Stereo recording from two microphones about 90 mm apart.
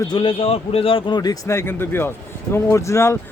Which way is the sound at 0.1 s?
80° left.